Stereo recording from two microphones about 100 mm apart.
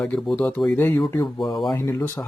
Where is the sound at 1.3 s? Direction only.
Centre (ahead or behind).